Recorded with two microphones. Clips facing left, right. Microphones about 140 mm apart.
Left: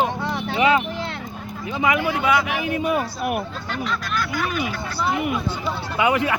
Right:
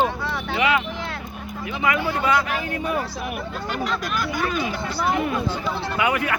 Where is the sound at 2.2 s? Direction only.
5° left (ahead or behind).